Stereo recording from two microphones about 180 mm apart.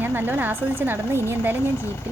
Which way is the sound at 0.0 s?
10° right (ahead or behind).